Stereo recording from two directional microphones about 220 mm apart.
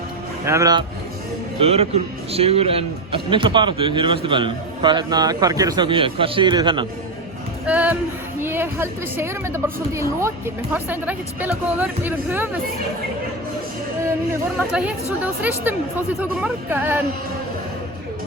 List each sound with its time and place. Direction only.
0.4 s a woman's voice: 15° right (ahead or behind)
1.6 s a man's voice: 30° right (ahead or behind)
7.7 s a woman's voice: 5° right (ahead or behind)
14.7 s a woman's voice: 5° right (ahead or behind)